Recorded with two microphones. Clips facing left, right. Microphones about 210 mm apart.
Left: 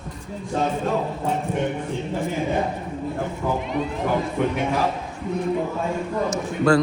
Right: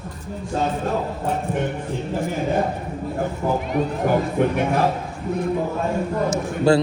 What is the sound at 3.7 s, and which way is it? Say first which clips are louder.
Speech: right 3 dB; 50° right (ahead or behind).